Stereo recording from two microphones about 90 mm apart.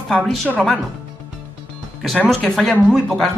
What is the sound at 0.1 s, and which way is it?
Speech, 5° left (ahead or behind).